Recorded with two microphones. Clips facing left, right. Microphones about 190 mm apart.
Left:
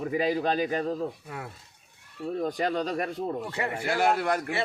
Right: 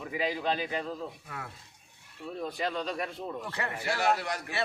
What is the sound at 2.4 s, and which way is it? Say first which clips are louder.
Speech: left 5 dB; 45° left (ahead or behind).